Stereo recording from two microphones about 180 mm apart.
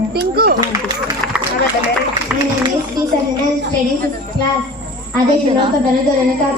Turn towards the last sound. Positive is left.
turn(degrees=-30)  # may be behind; listen again after turning